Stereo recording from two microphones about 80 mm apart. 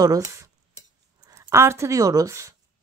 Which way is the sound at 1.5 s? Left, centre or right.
Right.